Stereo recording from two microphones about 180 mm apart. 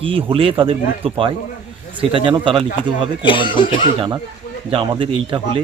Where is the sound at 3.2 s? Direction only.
30° left (ahead or behind).